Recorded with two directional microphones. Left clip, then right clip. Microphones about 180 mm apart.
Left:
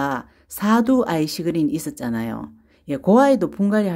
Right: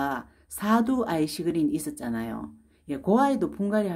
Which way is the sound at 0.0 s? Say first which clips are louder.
Left 5 dB; 35° left (ahead or behind).